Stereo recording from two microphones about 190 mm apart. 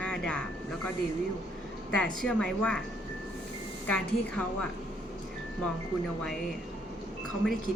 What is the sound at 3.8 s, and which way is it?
Speech, 10° left (ahead or behind).